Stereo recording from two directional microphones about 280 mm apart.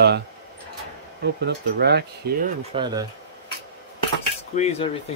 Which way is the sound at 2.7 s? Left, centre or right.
Centre.